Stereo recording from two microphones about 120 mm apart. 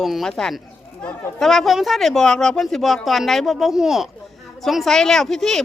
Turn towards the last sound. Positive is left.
turn(degrees=5)  # may be behind; listen again after turning